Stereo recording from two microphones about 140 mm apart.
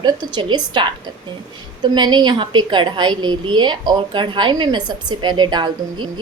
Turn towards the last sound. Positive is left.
turn(degrees=-30)  # may be behind; listen again after turning